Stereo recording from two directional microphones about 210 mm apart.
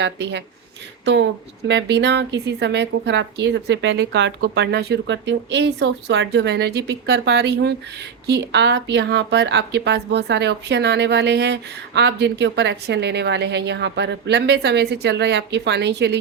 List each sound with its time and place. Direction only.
0.0 s speech: 55° right (ahead or behind)
1.6 s a woman's voice: 55° right (ahead or behind)